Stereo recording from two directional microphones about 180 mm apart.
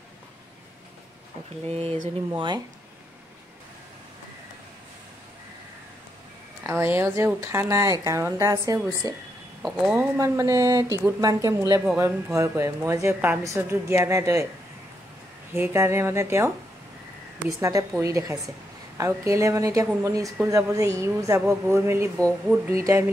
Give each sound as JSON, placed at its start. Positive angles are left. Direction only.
{"t": 1.7, "sound": "speech", "side_deg": -30}
{"t": 6.6, "sound": "a woman's voice", "side_deg": -15}
{"t": 9.6, "sound": "speech", "side_deg": 0}
{"t": 10.1, "sound": "a woman's voice", "side_deg": -15}
{"t": 15.5, "sound": "a woman's voice", "side_deg": -10}